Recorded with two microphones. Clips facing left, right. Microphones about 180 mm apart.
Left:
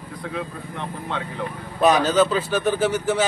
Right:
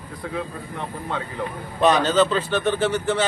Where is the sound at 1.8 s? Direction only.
10° left (ahead or behind).